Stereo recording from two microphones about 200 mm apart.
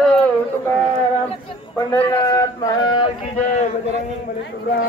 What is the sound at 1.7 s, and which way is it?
Speech, 20° left (ahead or behind).